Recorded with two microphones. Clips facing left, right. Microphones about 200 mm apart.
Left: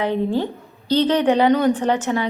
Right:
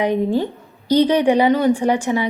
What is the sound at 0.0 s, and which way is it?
A woman's voice, 15° right (ahead or behind).